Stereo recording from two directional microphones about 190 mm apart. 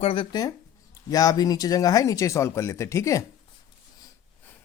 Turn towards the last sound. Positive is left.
turn(degrees=15)  # may be behind; listen again after turning